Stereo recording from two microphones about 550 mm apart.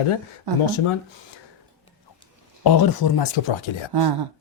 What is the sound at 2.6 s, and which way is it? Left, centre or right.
Speech, left.